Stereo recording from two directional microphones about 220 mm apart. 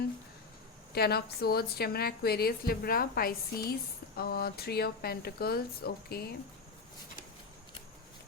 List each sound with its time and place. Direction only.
0.9 s a woman's voice: 45° left (ahead or behind)